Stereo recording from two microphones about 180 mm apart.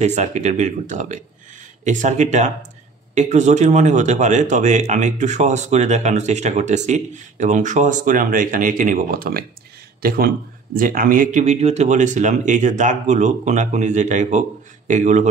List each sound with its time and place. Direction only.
0.0 s a man's voice: 40° right (ahead or behind)